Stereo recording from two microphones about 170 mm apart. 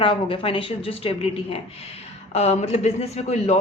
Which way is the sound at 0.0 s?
30° left (ahead or behind).